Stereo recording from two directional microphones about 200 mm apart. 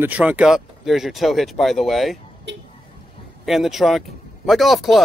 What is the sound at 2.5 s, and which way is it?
Speech, 60° right (ahead or behind).